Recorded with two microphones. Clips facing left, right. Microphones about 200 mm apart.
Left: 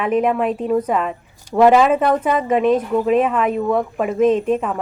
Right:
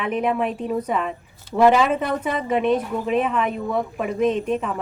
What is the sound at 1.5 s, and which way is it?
Speech, 15° left (ahead or behind).